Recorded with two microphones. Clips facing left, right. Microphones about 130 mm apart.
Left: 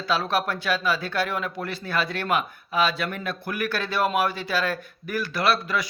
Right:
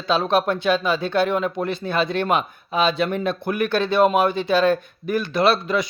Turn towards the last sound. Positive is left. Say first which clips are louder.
# right 5 dB
turn(degrees=-25)  # may be behind; listen again after turning